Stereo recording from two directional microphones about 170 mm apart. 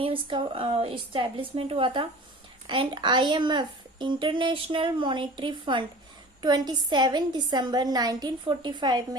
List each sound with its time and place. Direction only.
0.0 s a woman's voice: 30° right (ahead or behind)